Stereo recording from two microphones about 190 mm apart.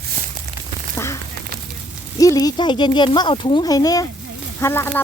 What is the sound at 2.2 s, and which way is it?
Speech, 20° left (ahead or behind).